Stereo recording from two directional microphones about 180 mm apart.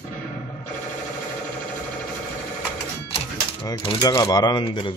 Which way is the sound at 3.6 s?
30° left (ahead or behind).